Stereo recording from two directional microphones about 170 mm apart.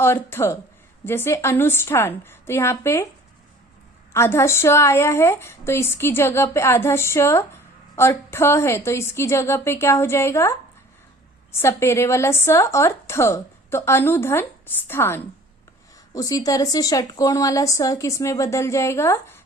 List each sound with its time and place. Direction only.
0.0 s a woman's voice: 15° left (ahead or behind)
4.1 s a woman's voice: 15° left (ahead or behind)